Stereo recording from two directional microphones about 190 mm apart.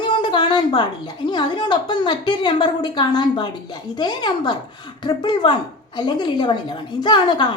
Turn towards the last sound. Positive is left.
turn(degrees=25)  # may be behind; listen again after turning